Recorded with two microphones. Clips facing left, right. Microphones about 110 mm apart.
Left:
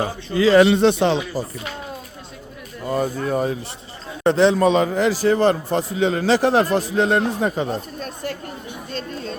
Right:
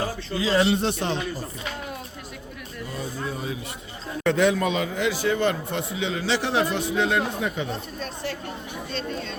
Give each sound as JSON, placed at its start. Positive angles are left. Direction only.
{"t": 0.3, "sound": "speech", "side_deg": 70}
{"t": 2.9, "sound": "speech", "side_deg": 60}
{"t": 4.2, "sound": "a man's voice", "side_deg": 30}
{"t": 8.9, "sound": "chatter", "side_deg": 45}